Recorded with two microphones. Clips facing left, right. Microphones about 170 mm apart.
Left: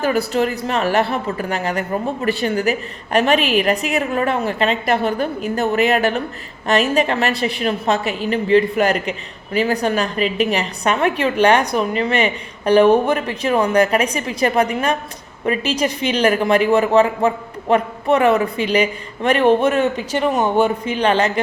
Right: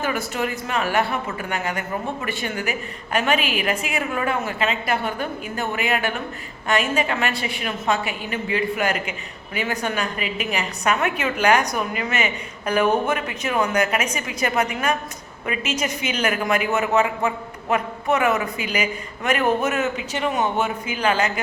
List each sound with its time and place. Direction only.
0.0 s a woman's voice: 35° left (ahead or behind)